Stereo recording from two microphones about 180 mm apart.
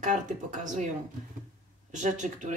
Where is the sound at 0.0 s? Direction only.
45° right (ahead or behind).